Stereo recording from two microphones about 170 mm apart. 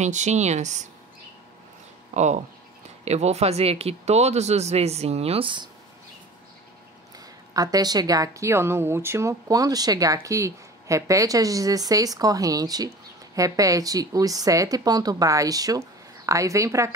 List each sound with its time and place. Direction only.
0.0 s speech: 45° right (ahead or behind)
2.1 s speech: 45° right (ahead or behind)
7.5 s a woman's voice: 20° right (ahead or behind)